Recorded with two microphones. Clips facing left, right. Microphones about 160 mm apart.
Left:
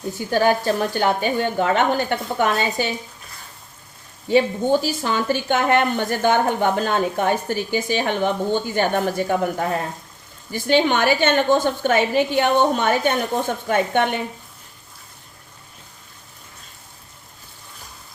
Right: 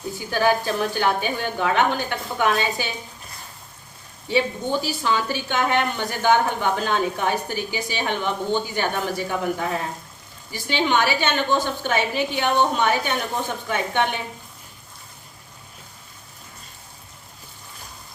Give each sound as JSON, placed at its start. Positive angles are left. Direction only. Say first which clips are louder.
{"t": 0.3, "sound": "a woman's voice", "louder": "left 3 dB", "side_deg": 45}
{"t": 4.3, "sound": "a woman's voice", "louder": "left 5 dB", "side_deg": 50}